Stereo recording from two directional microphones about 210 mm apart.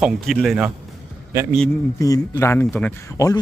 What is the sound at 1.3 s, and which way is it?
Speech, 15° right (ahead or behind).